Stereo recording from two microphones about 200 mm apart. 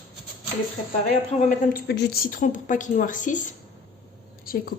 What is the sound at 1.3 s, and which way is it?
Speech, 35° left (ahead or behind).